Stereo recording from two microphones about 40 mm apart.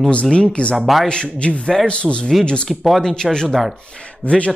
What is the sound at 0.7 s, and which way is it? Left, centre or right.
Speech, centre.